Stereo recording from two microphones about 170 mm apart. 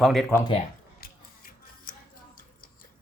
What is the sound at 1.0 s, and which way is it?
Music, 55° left (ahead or behind).